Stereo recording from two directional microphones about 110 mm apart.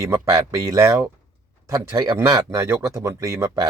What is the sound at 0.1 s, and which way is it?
Speech, 25° right (ahead or behind).